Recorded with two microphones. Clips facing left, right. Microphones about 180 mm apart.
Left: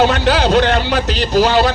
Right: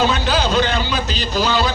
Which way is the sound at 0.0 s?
75° left (ahead or behind).